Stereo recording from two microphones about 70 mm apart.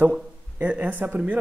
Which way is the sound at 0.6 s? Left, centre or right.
Right.